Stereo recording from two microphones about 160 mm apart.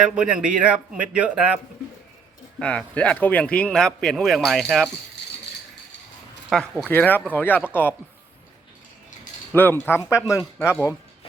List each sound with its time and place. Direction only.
0.2 s speech: 5° right (ahead or behind)
2.6 s speech: 5° left (ahead or behind)
6.5 s speech: 5° left (ahead or behind)
9.5 s speech: 15° left (ahead or behind)